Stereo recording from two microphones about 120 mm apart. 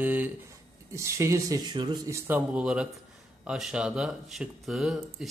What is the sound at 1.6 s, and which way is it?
Speech, 40° right (ahead or behind).